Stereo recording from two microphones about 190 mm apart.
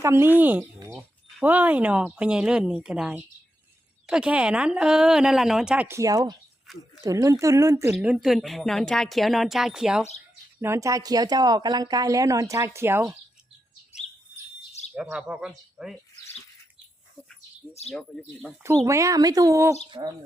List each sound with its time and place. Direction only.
0.0 s a woman's voice: 15° right (ahead or behind)
6.7 s speech: centre (ahead or behind)
7.0 s speech: 15° right (ahead or behind)
10.6 s a woman's voice: 15° right (ahead or behind)
14.9 s speech: 5° right (ahead or behind)
18.6 s a woman's voice: 15° right (ahead or behind)